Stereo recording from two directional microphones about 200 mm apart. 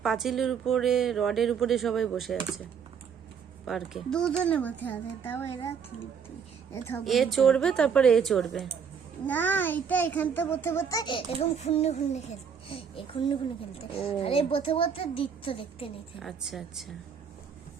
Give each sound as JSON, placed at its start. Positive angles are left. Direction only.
{"t": 0.0, "sound": "speech", "side_deg": 0}
{"t": 3.7, "sound": "a child's voice", "side_deg": 0}
{"t": 7.0, "sound": "a child's voice", "side_deg": 0}
{"t": 16.2, "sound": "speech", "side_deg": 0}